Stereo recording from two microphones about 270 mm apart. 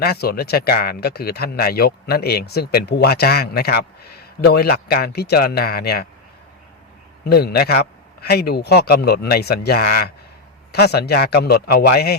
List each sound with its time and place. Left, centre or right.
0.0 s speech: left
7.3 s speech: left